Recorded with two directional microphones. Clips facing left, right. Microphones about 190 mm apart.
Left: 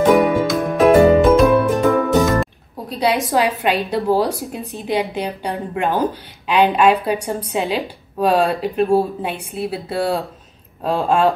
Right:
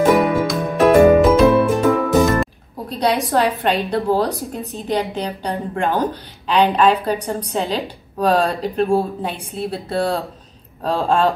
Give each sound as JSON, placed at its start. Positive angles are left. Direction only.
{"t": 0.0, "sound": "music", "side_deg": 0}
{"t": 3.3, "sound": "a woman's voice", "side_deg": 5}